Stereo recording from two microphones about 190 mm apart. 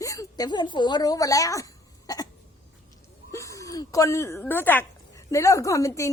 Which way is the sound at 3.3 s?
15° left (ahead or behind).